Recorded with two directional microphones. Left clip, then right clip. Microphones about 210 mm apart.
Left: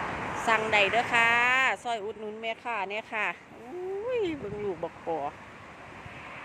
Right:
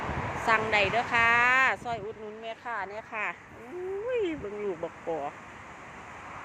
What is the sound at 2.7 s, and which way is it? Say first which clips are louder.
Speech: left 1 dB; 20° left (ahead or behind).